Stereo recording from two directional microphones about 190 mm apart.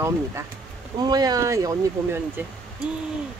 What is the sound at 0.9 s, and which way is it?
Speech, 20° right (ahead or behind).